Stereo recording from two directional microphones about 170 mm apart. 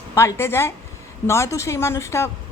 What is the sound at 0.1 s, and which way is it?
A woman's voice, 20° left (ahead or behind).